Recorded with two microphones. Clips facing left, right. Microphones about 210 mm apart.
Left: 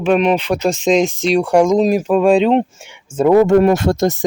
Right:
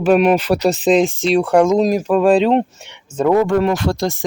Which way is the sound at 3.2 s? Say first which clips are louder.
Left 3 dB; 10° left (ahead or behind).